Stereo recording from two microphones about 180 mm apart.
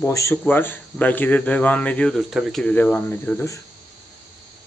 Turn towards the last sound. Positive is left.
turn(degrees=10)  # may be behind; listen again after turning